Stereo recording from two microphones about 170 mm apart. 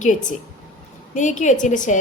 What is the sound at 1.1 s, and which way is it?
Speech, 45° left (ahead or behind).